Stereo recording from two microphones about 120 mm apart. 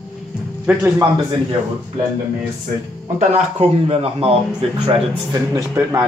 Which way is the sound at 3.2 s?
60° right (ahead or behind).